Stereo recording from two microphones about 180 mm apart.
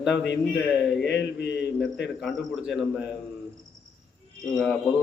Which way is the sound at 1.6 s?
Centre (ahead or behind).